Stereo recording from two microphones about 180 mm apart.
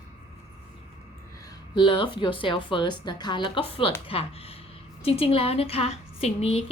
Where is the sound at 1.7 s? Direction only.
25° left (ahead or behind).